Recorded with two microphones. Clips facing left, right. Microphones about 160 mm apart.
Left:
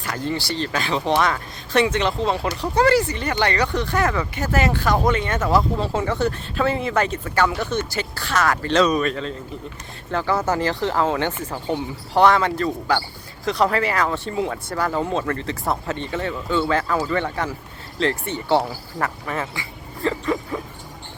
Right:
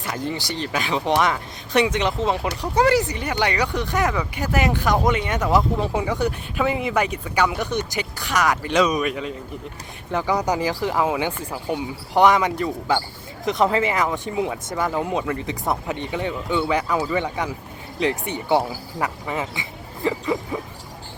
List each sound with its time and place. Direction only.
0.0 s speech: 20° right (ahead or behind)